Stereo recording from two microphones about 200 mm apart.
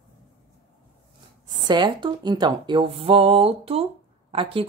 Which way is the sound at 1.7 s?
20° right (ahead or behind).